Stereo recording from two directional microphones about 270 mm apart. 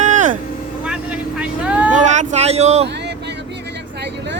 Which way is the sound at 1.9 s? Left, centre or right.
Right.